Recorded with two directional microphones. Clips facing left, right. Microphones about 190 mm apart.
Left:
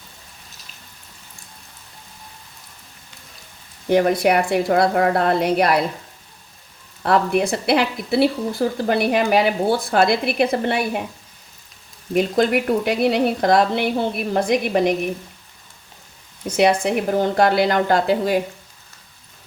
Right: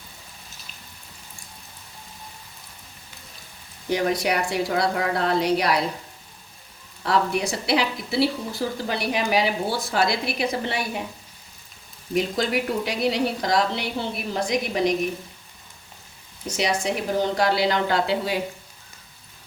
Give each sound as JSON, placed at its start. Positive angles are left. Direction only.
{"t": 3.8, "sound": "a woman's voice", "side_deg": 55}
{"t": 7.0, "sound": "a woman's voice", "side_deg": 55}
{"t": 12.1, "sound": "a woman's voice", "side_deg": 55}
{"t": 16.6, "sound": "a woman's voice", "side_deg": 55}